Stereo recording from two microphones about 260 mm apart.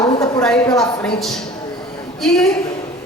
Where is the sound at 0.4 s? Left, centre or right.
Centre.